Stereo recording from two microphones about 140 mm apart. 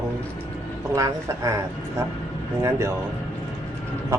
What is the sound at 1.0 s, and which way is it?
A woman's voice, 25° right (ahead or behind).